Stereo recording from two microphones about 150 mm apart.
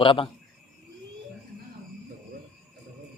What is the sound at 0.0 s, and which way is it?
Speech, 35° left (ahead or behind).